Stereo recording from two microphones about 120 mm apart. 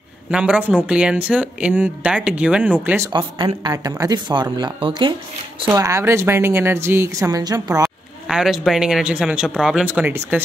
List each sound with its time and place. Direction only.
0.3 s speech: 10° right (ahead or behind)
3.1 s speech: 40° right (ahead or behind)
5.8 s a woman's voice: 25° right (ahead or behind)
8.3 s speech: 5° right (ahead or behind)